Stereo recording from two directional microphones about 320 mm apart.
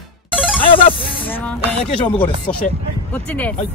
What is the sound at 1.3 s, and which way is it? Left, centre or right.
Speech, centre.